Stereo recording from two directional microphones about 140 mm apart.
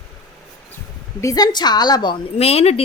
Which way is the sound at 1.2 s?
25° left (ahead or behind).